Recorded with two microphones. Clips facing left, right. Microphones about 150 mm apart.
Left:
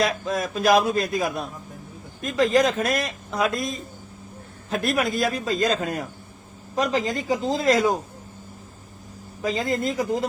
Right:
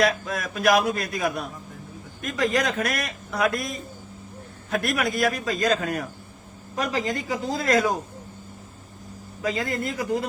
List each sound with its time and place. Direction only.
0.0 s a man's voice: 25° left (ahead or behind)
9.4 s a man's voice: 20° left (ahead or behind)